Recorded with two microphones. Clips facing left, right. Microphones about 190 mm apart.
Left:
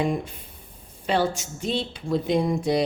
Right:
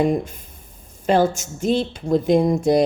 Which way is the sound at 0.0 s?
45° right (ahead or behind).